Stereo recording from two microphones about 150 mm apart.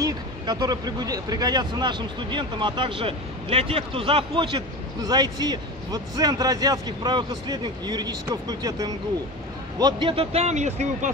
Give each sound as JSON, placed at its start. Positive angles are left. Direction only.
{"t": 0.0, "sound": "speech", "side_deg": -25}